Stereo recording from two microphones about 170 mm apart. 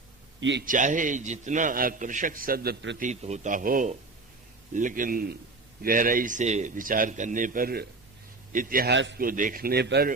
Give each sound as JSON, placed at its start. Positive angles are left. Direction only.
{"t": 0.3, "sound": "a man's voice", "side_deg": -90}
{"t": 0.6, "sound": "a man's voice", "side_deg": -50}
{"t": 3.0, "sound": "a man's voice", "side_deg": -45}
{"t": 9.2, "sound": "speech", "side_deg": -55}